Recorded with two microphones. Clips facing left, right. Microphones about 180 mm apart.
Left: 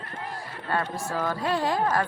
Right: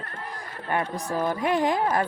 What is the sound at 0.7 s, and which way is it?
Speech, 15° right (ahead or behind).